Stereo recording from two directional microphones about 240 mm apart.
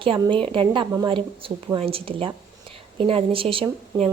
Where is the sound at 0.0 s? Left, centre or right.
Right.